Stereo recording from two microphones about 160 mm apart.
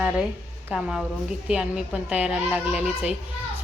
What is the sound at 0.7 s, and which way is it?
A woman's voice, centre (ahead or behind).